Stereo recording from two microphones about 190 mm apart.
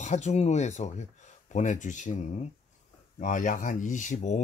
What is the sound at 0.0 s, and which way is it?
Speech, 35° left (ahead or behind).